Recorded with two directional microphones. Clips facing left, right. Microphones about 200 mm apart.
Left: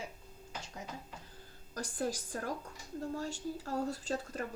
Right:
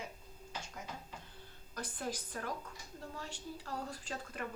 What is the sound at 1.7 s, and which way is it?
Speech, 45° left (ahead or behind).